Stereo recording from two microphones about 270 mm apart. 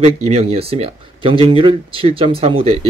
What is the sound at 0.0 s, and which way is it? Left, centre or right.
Speech, right.